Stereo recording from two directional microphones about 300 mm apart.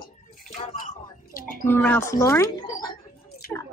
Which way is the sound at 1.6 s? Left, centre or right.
Centre.